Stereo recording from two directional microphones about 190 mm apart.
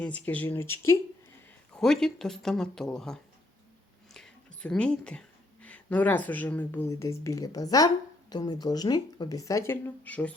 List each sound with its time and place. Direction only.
0.0 s speech: 10° left (ahead or behind)
1.7 s speech: 5° left (ahead or behind)